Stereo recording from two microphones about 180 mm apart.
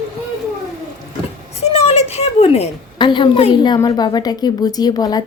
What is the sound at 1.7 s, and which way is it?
A woman's voice, 35° left (ahead or behind).